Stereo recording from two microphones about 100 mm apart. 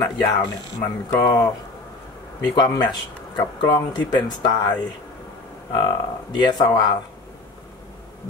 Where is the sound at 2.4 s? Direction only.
40° left (ahead or behind).